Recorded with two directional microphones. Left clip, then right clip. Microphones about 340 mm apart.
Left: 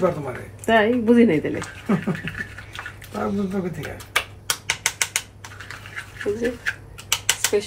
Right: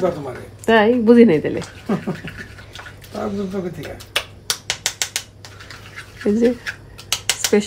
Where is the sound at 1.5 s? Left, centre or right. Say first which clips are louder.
Right 1 dB; centre.